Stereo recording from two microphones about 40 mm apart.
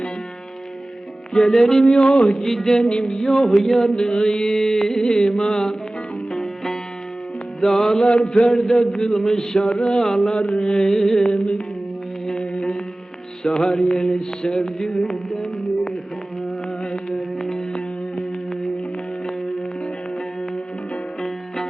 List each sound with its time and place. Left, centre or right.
1.3 s music: centre
1.9 s a sound: left
2.4 s music: centre
2.8 s music: left
8.0 s music: left
11.3 s a sound: left
12.4 s music: left
13.4 s mantra: centre
16.8 s a sound: centre
17.3 s music: centre
21.2 s music: centre